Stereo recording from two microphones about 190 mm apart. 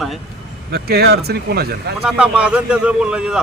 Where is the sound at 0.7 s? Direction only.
55° right (ahead or behind).